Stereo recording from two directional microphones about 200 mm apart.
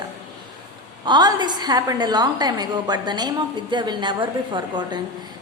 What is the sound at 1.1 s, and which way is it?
A woman's voice, 20° right (ahead or behind).